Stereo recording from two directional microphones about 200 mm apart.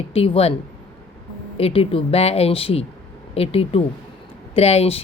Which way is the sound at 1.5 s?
30° left (ahead or behind).